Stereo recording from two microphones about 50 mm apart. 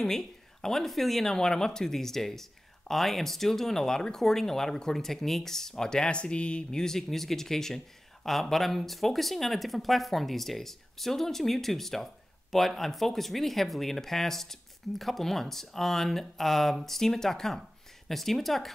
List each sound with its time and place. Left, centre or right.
0.0 s speech: centre